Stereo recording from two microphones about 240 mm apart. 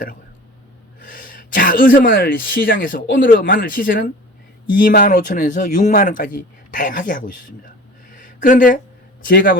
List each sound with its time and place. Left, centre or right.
1.0 s speech: left
8.1 s a sound: left
9.2 s speech: left